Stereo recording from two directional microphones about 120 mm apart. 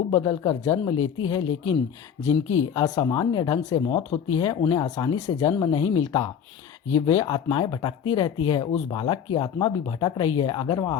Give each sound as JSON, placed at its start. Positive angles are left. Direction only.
{"t": 0.1, "sound": "speech", "side_deg": 35}
{"t": 0.9, "sound": "speech", "side_deg": 40}
{"t": 7.0, "sound": "speech", "side_deg": 30}